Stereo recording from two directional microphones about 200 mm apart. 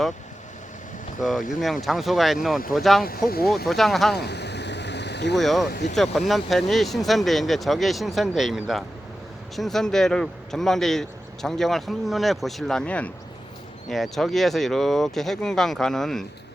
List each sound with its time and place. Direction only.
1.2 s speech: centre (ahead or behind)
3.2 s speech: 50° left (ahead or behind)
3.7 s speech: centre (ahead or behind)
4.1 s vehicle: 55° left (ahead or behind)
5.4 s speech: centre (ahead or behind)
5.6 s speech: 50° left (ahead or behind)
6.0 s speech: centre (ahead or behind)